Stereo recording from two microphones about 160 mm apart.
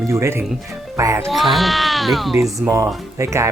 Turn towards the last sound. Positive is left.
turn(degrees=-15)  # may be behind; listen again after turning